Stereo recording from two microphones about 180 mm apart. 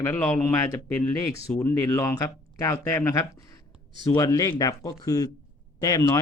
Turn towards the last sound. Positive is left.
turn(degrees=20)  # may be behind; listen again after turning